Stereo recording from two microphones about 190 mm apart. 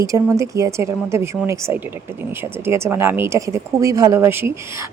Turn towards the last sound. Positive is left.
turn(degrees=-10)  # may be behind; listen again after turning